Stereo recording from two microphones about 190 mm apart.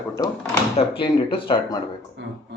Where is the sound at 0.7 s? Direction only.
25° left (ahead or behind).